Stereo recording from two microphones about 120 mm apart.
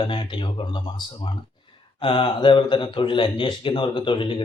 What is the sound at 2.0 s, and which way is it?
Speech, 45° left (ahead or behind).